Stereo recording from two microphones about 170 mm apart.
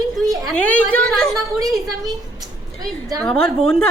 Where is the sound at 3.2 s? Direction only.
5° left (ahead or behind).